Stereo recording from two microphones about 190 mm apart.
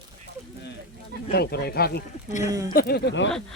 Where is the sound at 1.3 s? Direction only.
55° left (ahead or behind).